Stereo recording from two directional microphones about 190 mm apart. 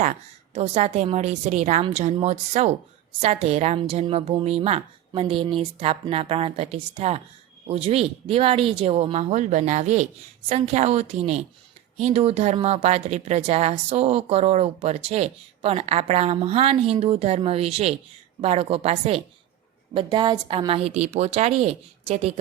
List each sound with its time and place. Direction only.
0.5 s speech: 35° right (ahead or behind)